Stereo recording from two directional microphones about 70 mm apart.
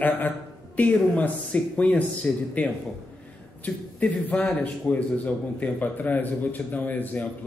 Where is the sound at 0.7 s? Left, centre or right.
Left.